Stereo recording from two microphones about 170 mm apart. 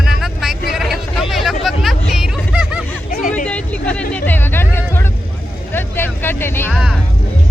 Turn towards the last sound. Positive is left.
turn(degrees=-5)  # may be behind; listen again after turning